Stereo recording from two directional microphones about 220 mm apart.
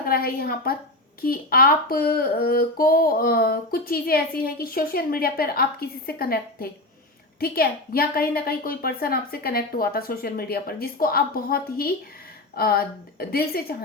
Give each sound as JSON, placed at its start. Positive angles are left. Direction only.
{"t": 0.0, "sound": "speech", "side_deg": 40}